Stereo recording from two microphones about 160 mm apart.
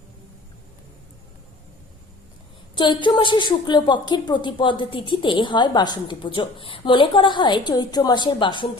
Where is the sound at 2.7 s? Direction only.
30° left (ahead or behind).